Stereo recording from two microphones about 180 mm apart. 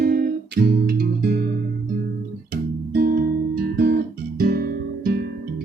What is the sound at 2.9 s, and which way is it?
Music, 50° right (ahead or behind).